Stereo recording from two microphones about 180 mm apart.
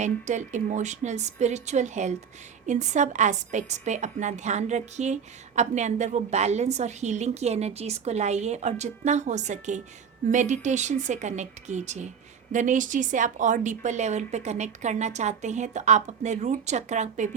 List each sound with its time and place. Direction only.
0.0 s a woman's voice: 40° right (ahead or behind)